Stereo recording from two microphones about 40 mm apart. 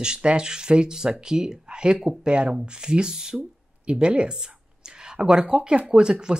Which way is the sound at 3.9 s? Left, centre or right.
Right.